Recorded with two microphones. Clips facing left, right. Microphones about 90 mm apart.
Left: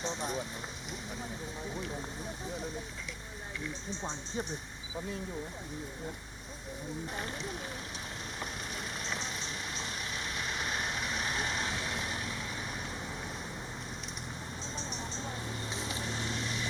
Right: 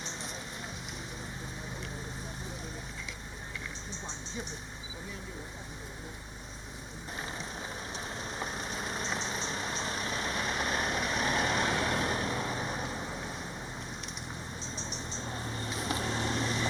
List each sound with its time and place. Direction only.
9.5 s vehicle: 45° right (ahead or behind)
15.9 s vehicle: 55° right (ahead or behind)